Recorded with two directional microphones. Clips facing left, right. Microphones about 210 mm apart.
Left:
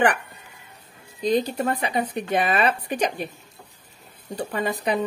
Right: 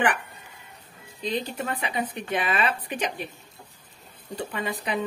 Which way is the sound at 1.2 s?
40° left (ahead or behind).